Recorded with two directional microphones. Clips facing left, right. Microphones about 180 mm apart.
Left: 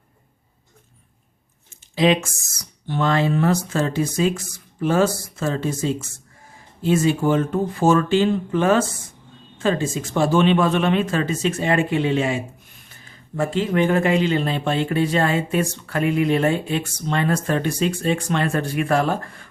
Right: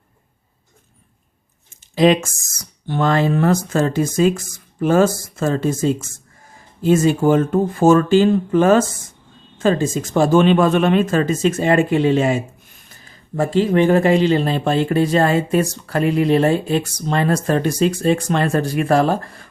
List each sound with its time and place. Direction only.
2.8 s speech: 50° right (ahead or behind)